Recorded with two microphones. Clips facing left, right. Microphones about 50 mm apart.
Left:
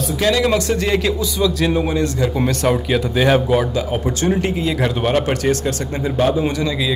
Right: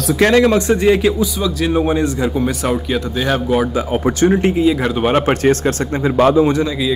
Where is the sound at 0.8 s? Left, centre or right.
Centre.